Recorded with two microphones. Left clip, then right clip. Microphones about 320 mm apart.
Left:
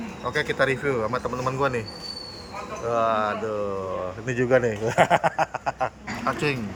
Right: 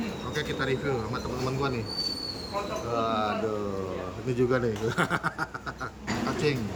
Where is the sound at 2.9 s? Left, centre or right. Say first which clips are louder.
Left 5 dB; centre.